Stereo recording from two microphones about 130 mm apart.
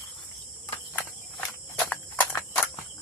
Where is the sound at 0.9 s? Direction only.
10° left (ahead or behind).